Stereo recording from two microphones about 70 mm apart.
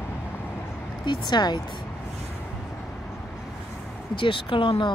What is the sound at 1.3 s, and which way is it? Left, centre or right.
Speech, left.